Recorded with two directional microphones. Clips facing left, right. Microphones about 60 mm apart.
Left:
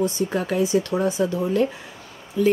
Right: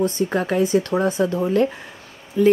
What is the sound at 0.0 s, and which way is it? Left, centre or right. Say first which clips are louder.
Speech: right 2 dB; right.